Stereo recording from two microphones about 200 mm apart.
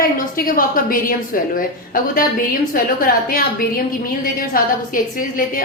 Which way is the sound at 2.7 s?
45° left (ahead or behind).